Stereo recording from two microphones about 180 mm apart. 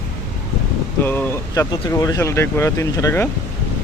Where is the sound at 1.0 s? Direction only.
10° left (ahead or behind).